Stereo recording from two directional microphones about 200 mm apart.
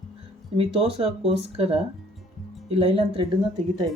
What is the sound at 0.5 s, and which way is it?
Speech, 25° right (ahead or behind).